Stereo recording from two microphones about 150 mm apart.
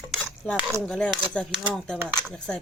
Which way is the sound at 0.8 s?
5° left (ahead or behind).